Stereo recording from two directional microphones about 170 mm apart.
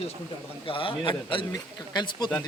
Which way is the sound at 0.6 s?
30° left (ahead or behind).